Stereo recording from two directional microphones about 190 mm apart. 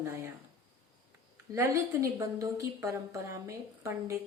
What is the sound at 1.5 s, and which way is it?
Speech, 15° right (ahead or behind).